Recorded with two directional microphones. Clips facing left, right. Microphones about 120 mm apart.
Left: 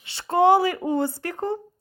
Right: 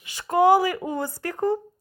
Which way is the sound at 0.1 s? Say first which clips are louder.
Even; 30° left (ahead or behind).